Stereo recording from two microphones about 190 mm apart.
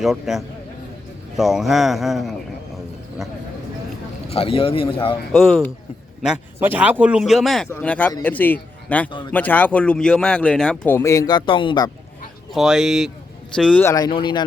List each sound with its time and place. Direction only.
0.0 s a man's voice: centre (ahead or behind)
4.3 s speech: 30° left (ahead or behind)
5.3 s a man's voice: centre (ahead or behind); by 11.9 s 25° left (ahead or behind)
12.5 s a man's voice: centre (ahead or behind)
13.9 s speech: 25° left (ahead or behind)